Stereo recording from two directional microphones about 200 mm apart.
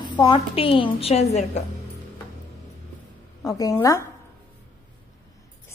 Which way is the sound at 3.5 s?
15° left (ahead or behind).